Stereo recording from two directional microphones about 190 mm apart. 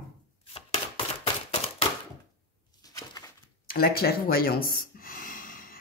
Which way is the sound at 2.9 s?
20° left (ahead or behind).